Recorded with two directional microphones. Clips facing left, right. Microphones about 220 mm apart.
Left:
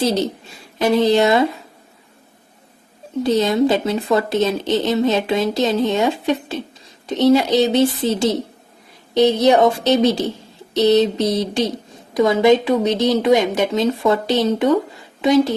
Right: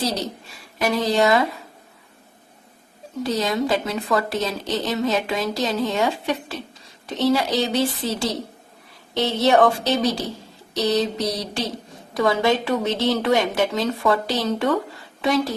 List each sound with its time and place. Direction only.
0.0 s a woman's voice: 25° left (ahead or behind)
3.2 s a woman's voice: 25° left (ahead or behind)